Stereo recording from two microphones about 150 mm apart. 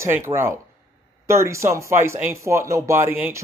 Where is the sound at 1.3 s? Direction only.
20° right (ahead or behind).